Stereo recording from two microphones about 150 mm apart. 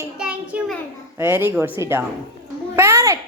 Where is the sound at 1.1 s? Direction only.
15° right (ahead or behind).